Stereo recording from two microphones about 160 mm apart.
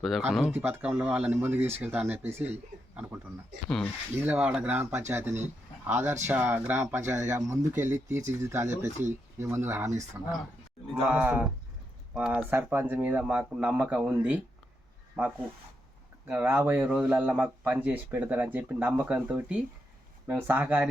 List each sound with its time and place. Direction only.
0.5 s speech: 15° right (ahead or behind)
3.7 s speech: 5° left (ahead or behind)
4.1 s speech: 15° right (ahead or behind)